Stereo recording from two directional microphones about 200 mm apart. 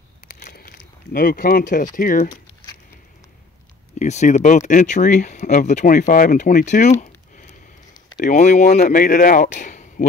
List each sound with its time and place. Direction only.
0.3 s a sound: 50° left (ahead or behind)
2.0 s speech: 45° left (ahead or behind)
4.0 s speech: 35° left (ahead or behind)